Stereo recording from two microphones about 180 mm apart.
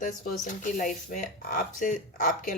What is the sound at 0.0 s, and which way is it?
Speech, 45° left (ahead or behind).